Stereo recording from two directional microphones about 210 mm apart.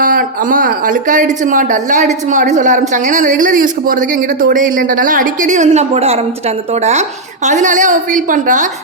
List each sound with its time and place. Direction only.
0.0 s speech: 40° right (ahead or behind)